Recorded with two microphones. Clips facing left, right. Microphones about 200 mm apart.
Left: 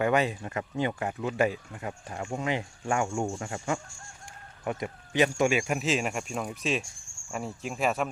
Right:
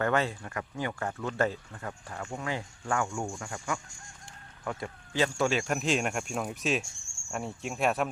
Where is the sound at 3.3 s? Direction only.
30° left (ahead or behind).